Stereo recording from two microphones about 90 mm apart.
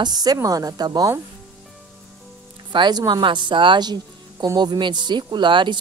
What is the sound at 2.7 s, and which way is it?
Speech, 55° right (ahead or behind).